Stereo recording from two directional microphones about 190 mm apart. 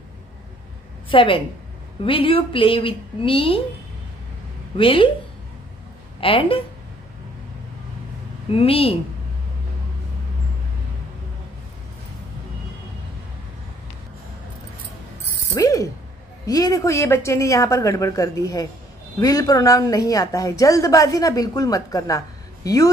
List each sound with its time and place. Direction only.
1.1 s a woman's voice: 25° left (ahead or behind)
4.7 s a woman's voice: 30° left (ahead or behind)
6.2 s a woman's voice: 30° left (ahead or behind)
8.5 s a woman's voice: 30° left (ahead or behind)
15.5 s mechanisms: 15° left (ahead or behind)
16.4 s a woman's voice: 20° left (ahead or behind)